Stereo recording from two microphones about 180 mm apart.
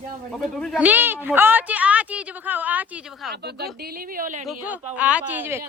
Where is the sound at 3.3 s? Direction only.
65° right (ahead or behind).